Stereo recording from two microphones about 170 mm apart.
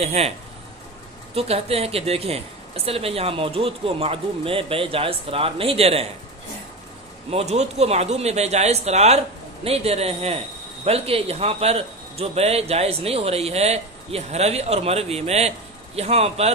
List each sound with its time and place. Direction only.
0.0 s a man's voice: 40° right (ahead or behind)
1.3 s a man's voice: 35° right (ahead or behind)
7.2 s a man's voice: 40° right (ahead or behind)